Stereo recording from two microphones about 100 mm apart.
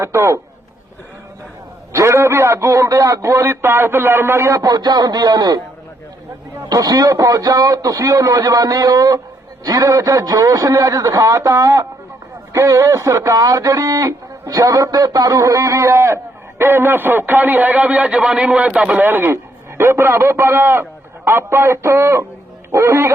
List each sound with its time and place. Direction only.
0.0 s speech: 30° right (ahead or behind)
1.9 s speech: 30° right (ahead or behind)
6.7 s a man's voice: 40° right (ahead or behind)